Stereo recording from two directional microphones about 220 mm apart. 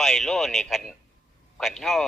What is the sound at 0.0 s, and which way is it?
Speech, centre (ahead or behind).